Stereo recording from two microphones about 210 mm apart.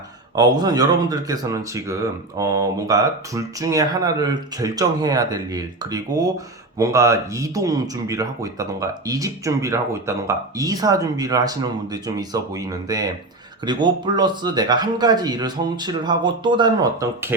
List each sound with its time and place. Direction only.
0.3 s speech: 20° right (ahead or behind)